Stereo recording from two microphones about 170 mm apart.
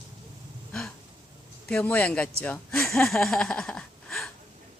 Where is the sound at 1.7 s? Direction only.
10° left (ahead or behind).